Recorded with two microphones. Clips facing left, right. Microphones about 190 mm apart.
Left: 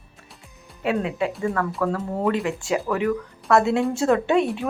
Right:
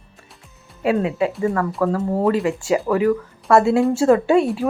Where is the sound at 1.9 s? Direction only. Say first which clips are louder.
Right 5 dB; 30° right (ahead or behind).